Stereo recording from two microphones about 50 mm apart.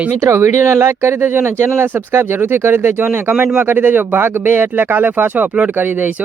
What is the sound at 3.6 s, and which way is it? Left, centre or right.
Speech, right.